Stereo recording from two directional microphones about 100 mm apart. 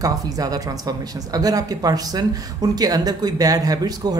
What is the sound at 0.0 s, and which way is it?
Speech, 40° right (ahead or behind).